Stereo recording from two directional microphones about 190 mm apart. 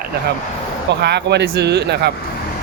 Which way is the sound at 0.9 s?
60° right (ahead or behind).